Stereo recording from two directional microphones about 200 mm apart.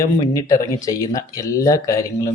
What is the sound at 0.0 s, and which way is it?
Speech, 15° left (ahead or behind).